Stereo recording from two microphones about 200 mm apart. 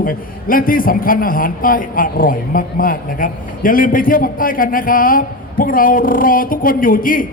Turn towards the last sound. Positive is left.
turn(degrees=45)  # may be behind; listen again after turning